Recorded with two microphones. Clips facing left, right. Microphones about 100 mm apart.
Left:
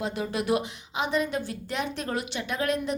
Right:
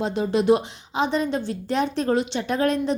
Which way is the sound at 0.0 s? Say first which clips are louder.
Right 8 dB; 30° right (ahead or behind).